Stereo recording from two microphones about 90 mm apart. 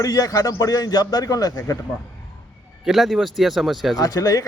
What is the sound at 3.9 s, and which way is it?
Speech, 45° left (ahead or behind).